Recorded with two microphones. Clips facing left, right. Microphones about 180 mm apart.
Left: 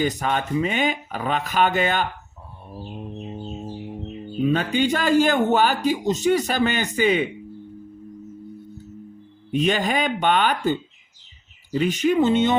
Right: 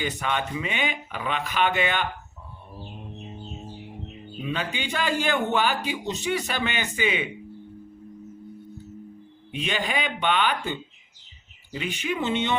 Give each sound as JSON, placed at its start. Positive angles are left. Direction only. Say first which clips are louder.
{"t": 0.0, "sound": "a man's voice", "louder": "left 5 dB", "side_deg": 40}
{"t": 4.4, "sound": "a man's voice", "louder": "left 10 dB", "side_deg": 45}
{"t": 9.5, "sound": "a man's voice", "louder": "left 7 dB", "side_deg": 45}